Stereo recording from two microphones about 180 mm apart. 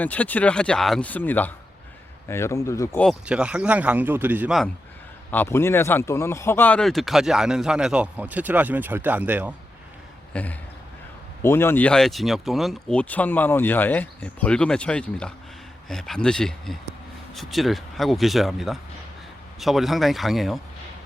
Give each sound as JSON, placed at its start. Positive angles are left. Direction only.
{"t": 0.0, "sound": "speech", "side_deg": 10}
{"t": 3.0, "sound": "speech", "side_deg": -5}
{"t": 5.3, "sound": "speech", "side_deg": 10}
{"t": 10.3, "sound": "speech", "side_deg": 10}